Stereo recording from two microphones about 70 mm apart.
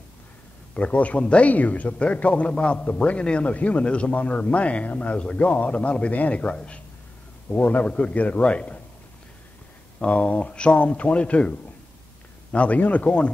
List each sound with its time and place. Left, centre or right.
0.7 s speech: left
9.9 s speech: centre
12.5 s speech: centre